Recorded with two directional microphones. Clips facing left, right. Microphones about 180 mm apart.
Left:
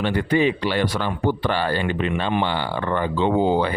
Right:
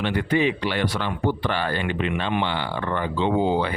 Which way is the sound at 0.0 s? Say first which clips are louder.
Left 2 dB; 40° left (ahead or behind).